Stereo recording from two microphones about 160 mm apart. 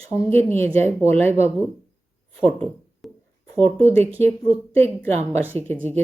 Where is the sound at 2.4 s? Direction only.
5° left (ahead or behind).